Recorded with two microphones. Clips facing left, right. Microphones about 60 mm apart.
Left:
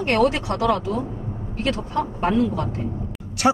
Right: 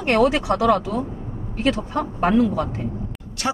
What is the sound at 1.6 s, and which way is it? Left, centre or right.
Speech, right.